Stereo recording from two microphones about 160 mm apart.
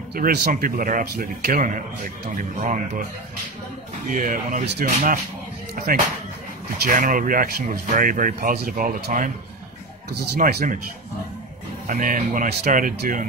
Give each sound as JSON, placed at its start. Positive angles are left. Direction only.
{"t": 0.1, "sound": "speech", "side_deg": -80}
{"t": 4.1, "sound": "speech", "side_deg": -55}
{"t": 4.6, "sound": "speech", "side_deg": -70}
{"t": 10.1, "sound": "speech", "side_deg": -75}
{"t": 11.9, "sound": "speech", "side_deg": -55}
{"t": 12.4, "sound": "speech", "side_deg": -65}